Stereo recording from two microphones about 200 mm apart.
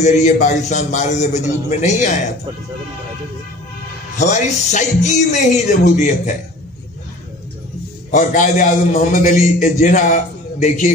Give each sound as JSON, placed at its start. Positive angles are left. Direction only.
{"t": 0.0, "sound": "a man's voice", "side_deg": 35}
{"t": 4.2, "sound": "a man's voice", "side_deg": 35}
{"t": 8.1, "sound": "a man's voice", "side_deg": 40}